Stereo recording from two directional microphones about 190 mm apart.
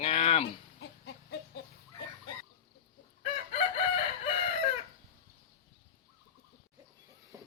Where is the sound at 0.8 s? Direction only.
65° left (ahead or behind).